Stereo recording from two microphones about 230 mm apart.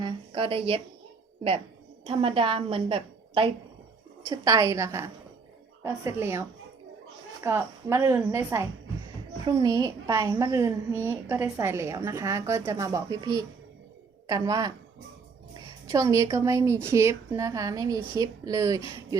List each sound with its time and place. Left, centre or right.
0.0 s a sound: right
2.0 s a woman's voice: right
7.4 s a woman's voice: centre